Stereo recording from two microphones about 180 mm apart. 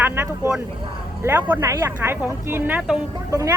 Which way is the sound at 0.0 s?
10° right (ahead or behind).